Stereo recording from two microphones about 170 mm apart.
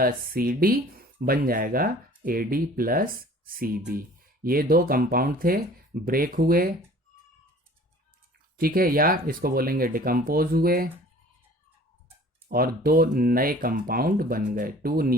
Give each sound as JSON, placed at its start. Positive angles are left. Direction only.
{"t": 0.0, "sound": "speech", "side_deg": -60}
{"t": 8.5, "sound": "speech", "side_deg": -60}
{"t": 12.5, "sound": "speech", "side_deg": -60}